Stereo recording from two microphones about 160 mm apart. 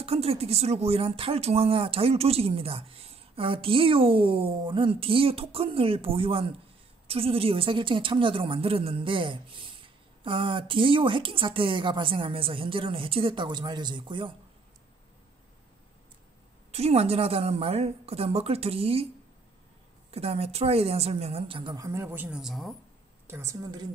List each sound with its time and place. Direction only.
0.0 s speech: 40° right (ahead or behind)
16.7 s speech: 40° right (ahead or behind)
20.1 s speech: 40° right (ahead or behind); by 22.8 s centre (ahead or behind)
23.2 s a woman's voice: 15° right (ahead or behind)